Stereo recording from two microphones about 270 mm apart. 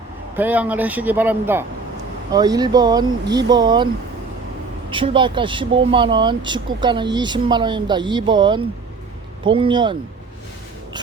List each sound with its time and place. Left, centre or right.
0.3 s speech: centre
4.9 s speech: centre